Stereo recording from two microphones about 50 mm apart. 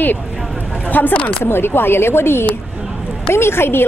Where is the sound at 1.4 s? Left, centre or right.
Left.